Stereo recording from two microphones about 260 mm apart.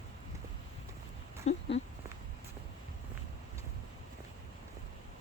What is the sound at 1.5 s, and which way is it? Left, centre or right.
Speech, left.